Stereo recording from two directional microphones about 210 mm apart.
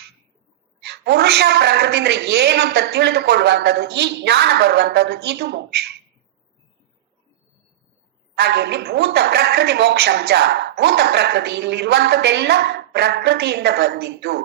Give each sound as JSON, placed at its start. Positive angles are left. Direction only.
{"t": 0.8, "sound": "speech", "side_deg": -50}
{"t": 8.4, "sound": "speech", "side_deg": -50}